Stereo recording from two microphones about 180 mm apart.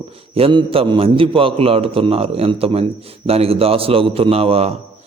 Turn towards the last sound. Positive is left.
turn(degrees=-35)  # may be behind; listen again after turning